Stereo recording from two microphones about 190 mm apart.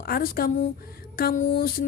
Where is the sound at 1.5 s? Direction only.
50° left (ahead or behind).